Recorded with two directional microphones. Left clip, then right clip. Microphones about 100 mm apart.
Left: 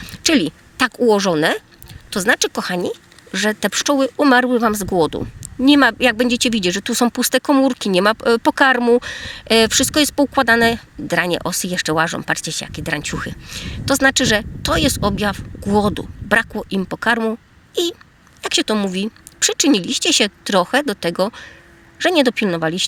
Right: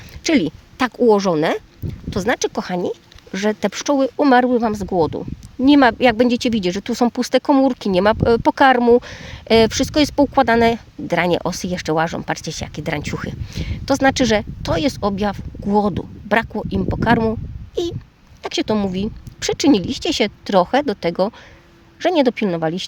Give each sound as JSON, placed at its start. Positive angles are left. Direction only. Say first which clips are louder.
{"t": 0.0, "sound": "speech", "louder": "left 1 dB", "side_deg": -20}
{"t": 4.4, "sound": "a woman's voice", "louder": "left 1 dB", "side_deg": -10}
{"t": 5.6, "sound": "a woman's voice", "louder": "even", "side_deg": -25}